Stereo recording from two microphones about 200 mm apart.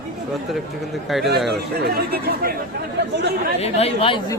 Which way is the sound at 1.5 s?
50° right (ahead or behind).